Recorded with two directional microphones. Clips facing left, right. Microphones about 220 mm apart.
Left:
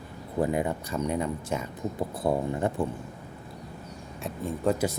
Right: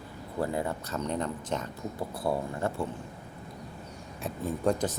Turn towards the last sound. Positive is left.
turn(degrees=5)  # may be behind; listen again after turning